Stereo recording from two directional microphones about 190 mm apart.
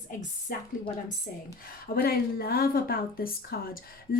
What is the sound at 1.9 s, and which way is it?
Speech, 55° left (ahead or behind).